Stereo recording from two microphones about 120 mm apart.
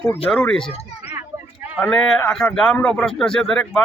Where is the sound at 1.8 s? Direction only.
5° left (ahead or behind).